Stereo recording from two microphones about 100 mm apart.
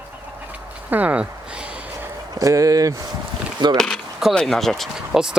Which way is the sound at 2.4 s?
35° right (ahead or behind).